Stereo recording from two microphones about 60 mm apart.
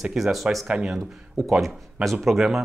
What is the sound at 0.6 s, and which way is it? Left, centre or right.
Speech, centre.